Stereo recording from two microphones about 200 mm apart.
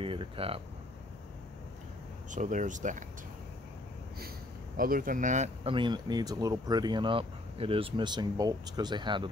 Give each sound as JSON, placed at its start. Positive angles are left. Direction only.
{"t": 0.0, "sound": "speech", "side_deg": -25}
{"t": 2.3, "sound": "speech", "side_deg": -40}
{"t": 4.7, "sound": "speech", "side_deg": -45}